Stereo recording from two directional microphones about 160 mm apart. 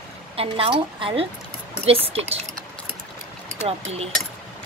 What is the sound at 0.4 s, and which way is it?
Speech, 35° right (ahead or behind).